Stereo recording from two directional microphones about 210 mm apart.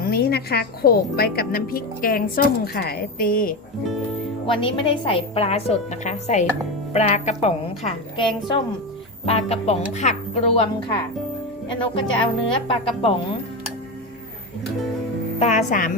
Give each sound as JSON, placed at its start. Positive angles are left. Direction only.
{"t": 0.0, "sound": "a woman's voice", "side_deg": 50}
{"t": 4.4, "sound": "a woman's voice", "side_deg": 25}
{"t": 12.2, "sound": "a woman's voice", "side_deg": 25}
{"t": 15.4, "sound": "a woman's voice", "side_deg": 35}